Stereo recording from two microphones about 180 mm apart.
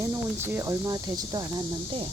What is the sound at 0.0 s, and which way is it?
Speech, 15° right (ahead or behind).